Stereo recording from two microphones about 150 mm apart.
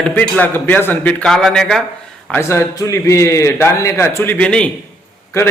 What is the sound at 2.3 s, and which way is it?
A man's voice, 15° left (ahead or behind).